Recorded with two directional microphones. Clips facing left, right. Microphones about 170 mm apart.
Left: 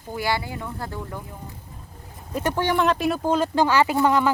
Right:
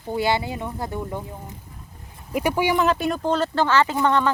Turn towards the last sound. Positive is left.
turn(degrees=10)  # may be behind; listen again after turning